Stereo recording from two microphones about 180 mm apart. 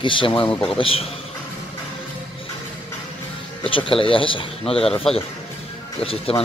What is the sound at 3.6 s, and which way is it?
Speech, 30° left (ahead or behind).